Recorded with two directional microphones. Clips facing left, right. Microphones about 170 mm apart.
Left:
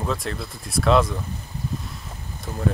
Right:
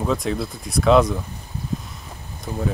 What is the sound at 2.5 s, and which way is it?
Speech, 10° right (ahead or behind).